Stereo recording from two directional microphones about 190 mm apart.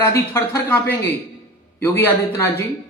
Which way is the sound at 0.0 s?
15° left (ahead or behind).